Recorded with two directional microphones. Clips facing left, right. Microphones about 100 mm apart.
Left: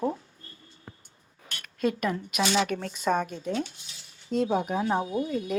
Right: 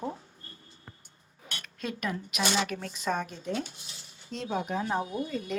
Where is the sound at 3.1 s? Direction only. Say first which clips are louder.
Left 5 dB; 15° left (ahead or behind).